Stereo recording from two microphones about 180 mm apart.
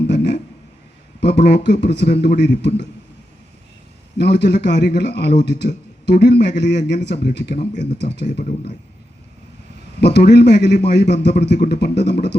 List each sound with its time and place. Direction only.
0.1 s a sound: 70° left (ahead or behind)
1.2 s a man's voice: 70° left (ahead or behind)
4.2 s a man's voice: 70° left (ahead or behind)
10.0 s a man's voice: 70° left (ahead or behind)